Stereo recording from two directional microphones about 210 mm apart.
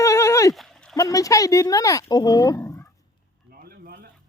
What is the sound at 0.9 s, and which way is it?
Speech, 15° left (ahead or behind).